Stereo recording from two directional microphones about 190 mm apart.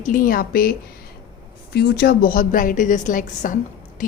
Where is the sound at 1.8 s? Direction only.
50° left (ahead or behind).